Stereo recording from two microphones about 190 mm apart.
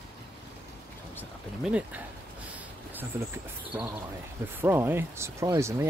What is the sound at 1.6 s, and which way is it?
Speech, 5° right (ahead or behind).